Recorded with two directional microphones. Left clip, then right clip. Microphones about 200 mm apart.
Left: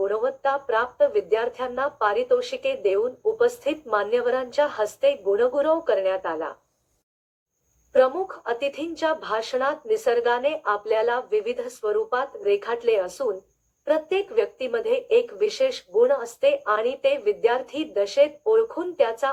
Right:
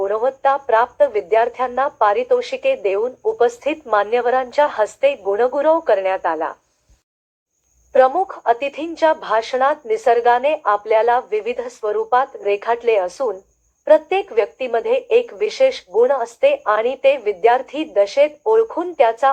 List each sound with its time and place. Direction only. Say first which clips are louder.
0.0 s speech: right 6 dB; 30° left (ahead or behind)
7.9 s speech: right 6 dB; 30° left (ahead or behind)